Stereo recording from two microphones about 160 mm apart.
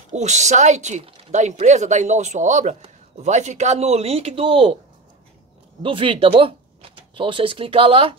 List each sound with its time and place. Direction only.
0.1 s speech: 45° right (ahead or behind)
5.8 s speech: 35° right (ahead or behind)